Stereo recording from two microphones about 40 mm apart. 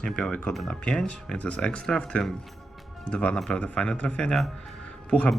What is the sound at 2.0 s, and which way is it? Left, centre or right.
A man's voice, left.